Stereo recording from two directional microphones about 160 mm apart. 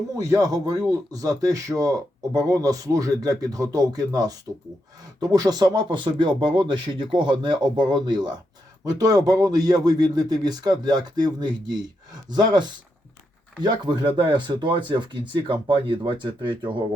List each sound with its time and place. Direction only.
0.1 s a man's voice: 20° right (ahead or behind)